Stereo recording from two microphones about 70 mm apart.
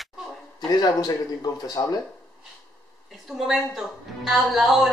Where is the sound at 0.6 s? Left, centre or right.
Left.